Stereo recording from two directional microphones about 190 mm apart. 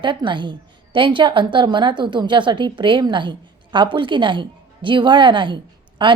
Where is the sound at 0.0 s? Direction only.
25° right (ahead or behind).